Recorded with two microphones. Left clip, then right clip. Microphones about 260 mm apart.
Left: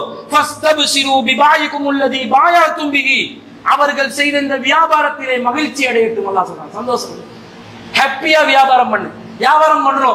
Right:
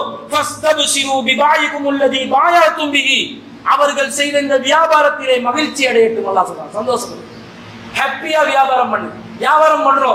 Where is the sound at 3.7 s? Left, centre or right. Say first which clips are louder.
Even; left.